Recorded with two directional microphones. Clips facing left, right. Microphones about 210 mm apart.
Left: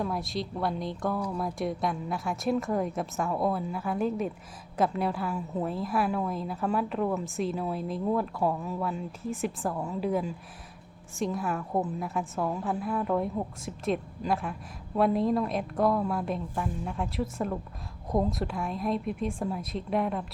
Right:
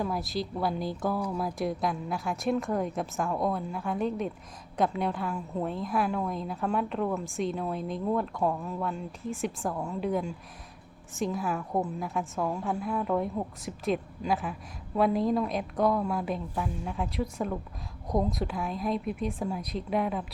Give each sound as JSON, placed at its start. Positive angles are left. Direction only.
{"t": 0.0, "sound": "a woman's voice", "side_deg": 0}